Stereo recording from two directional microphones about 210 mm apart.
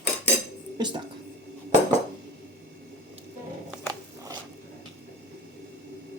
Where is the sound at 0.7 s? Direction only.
20° right (ahead or behind).